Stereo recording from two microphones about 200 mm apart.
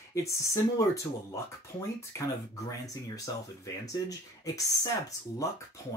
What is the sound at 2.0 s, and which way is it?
Speech, 15° left (ahead or behind).